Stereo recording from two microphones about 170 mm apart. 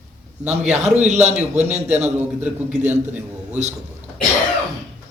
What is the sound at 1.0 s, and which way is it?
Speech, 40° right (ahead or behind).